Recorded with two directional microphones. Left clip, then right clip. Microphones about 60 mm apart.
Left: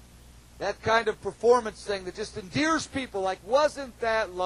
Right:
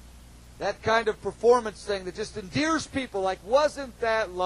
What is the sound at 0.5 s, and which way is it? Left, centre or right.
A man's voice, left.